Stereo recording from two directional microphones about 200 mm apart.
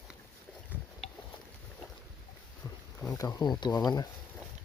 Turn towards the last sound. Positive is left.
turn(degrees=20)  # may be behind; listen again after turning